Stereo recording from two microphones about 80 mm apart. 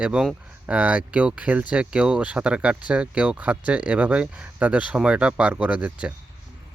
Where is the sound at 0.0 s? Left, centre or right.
Centre.